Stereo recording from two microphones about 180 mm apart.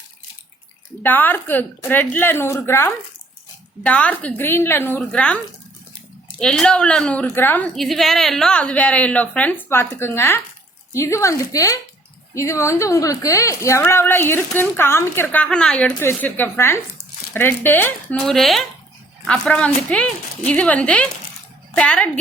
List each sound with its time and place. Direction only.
1.0 s a woman's voice: 10° left (ahead or behind)
6.4 s a woman's voice: 5° left (ahead or behind)